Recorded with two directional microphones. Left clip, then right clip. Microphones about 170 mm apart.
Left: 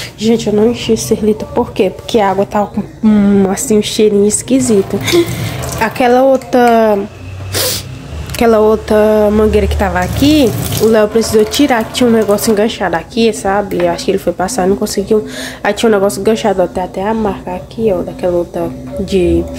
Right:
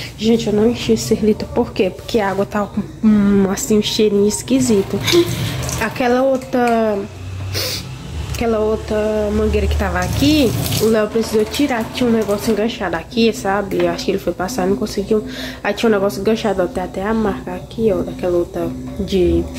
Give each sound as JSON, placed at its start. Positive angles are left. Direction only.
{"t": 0.2, "sound": "a woman's voice", "side_deg": 15}
{"t": 8.4, "sound": "a woman's voice", "side_deg": 35}